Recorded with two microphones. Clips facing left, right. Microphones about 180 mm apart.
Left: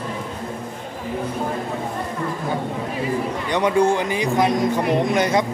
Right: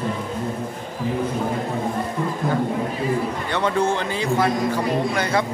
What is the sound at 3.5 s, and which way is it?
A man's voice, 15° left (ahead or behind).